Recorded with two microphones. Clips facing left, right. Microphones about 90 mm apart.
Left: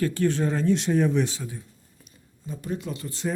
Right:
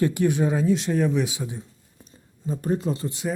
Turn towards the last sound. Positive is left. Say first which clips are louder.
# right 1 dB
turn(degrees=-10)  # may be behind; listen again after turning